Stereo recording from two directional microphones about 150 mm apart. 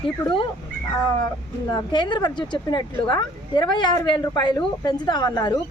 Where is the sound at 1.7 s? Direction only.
30° left (ahead or behind).